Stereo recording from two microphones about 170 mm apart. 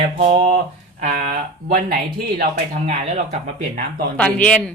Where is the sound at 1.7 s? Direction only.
60° right (ahead or behind).